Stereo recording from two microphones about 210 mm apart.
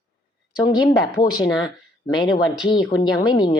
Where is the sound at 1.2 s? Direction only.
20° left (ahead or behind).